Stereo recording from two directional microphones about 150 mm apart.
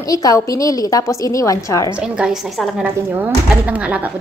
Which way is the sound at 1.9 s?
5° right (ahead or behind).